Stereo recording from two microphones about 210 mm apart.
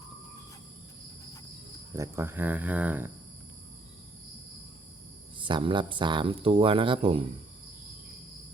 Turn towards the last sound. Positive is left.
turn(degrees=-25)  # may be behind; listen again after turning